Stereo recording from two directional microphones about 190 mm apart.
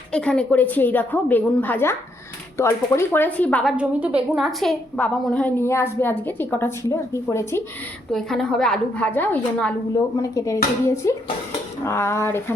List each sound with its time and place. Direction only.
0.1 s speech: 5° left (ahead or behind)
8.1 s a woman's voice: centre (ahead or behind)